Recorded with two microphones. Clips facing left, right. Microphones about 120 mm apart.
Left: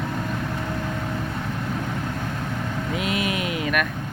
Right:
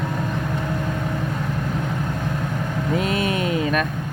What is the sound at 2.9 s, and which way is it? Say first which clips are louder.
Vehicle: right 4 dB; 35° right (ahead or behind).